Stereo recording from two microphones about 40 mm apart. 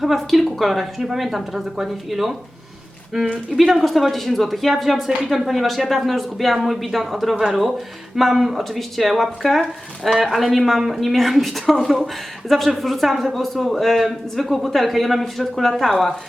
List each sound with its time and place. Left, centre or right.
0.0 s speech: centre
3.6 s speech: centre